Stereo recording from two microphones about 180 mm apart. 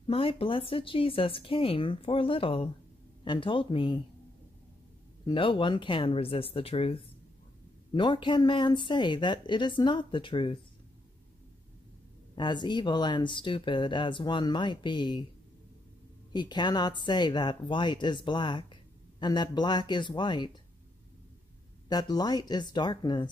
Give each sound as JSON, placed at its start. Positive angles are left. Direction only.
{"t": 0.0, "sound": "speech", "side_deg": 30}
{"t": 5.2, "sound": "speech", "side_deg": 30}
{"t": 12.4, "sound": "speech", "side_deg": 25}
{"t": 16.3, "sound": "speech", "side_deg": 25}
{"t": 21.8, "sound": "speech", "side_deg": 25}